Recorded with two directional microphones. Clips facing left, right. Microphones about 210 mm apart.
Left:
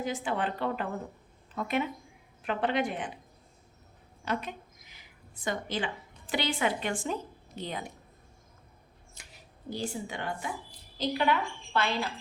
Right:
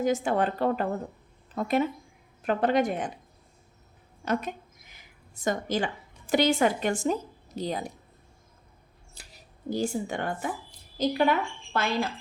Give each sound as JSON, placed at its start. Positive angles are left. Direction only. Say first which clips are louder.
{"t": 0.0, "sound": "speech", "louder": "right 7 dB", "side_deg": -45}
{"t": 4.3, "sound": "a sound", "louder": "right 5 dB", "side_deg": -45}
{"t": 6.3, "sound": "speech", "louder": "right 7 dB", "side_deg": -45}
{"t": 9.1, "sound": "a woman's voice", "louder": "right 2 dB", "side_deg": -40}